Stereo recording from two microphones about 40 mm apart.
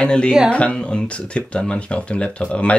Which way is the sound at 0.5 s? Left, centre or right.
Left.